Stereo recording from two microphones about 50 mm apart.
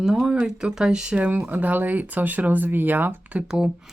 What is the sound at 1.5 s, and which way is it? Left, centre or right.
Speech, right.